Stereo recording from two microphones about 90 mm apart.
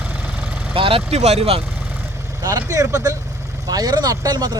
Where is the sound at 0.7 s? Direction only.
90° right.